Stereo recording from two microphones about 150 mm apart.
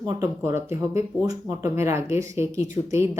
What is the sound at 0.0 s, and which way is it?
Speech, 20° right (ahead or behind).